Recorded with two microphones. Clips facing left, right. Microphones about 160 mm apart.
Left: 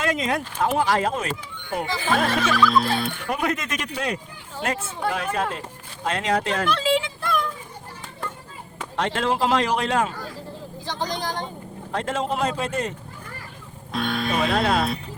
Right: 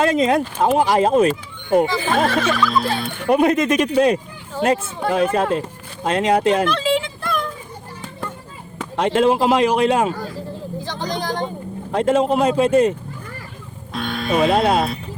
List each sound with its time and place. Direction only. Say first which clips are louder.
0.0 s speech: right 8 dB; 30° right (ahead or behind)
2.0 s music: right 4 dB; centre (ahead or behind)
3.2 s a man's voice: right 10 dB; 25° right (ahead or behind)
6.7 s a sound: right 2 dB; 5° left (ahead or behind)
9.0 s a man's voice: right 7 dB; 15° right (ahead or behind)
11.0 s vehicle: right 4 dB; 50° right (ahead or behind)
11.9 s a man's voice: right 9 dB; 15° right (ahead or behind)
13.9 s music: right 3 dB; centre (ahead or behind)
14.4 s speech: right 6 dB; 25° right (ahead or behind)